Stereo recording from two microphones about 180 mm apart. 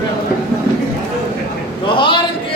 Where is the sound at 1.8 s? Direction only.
25° left (ahead or behind).